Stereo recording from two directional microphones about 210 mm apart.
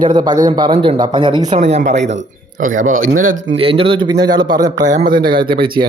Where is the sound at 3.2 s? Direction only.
65° right (ahead or behind).